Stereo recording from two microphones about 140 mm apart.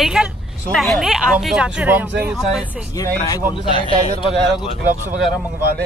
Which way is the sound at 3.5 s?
35° left (ahead or behind).